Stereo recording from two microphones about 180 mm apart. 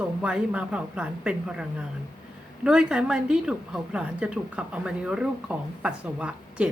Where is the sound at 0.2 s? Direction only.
5° right (ahead or behind).